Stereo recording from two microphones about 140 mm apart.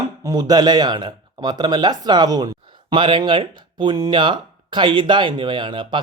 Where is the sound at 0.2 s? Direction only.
25° right (ahead or behind).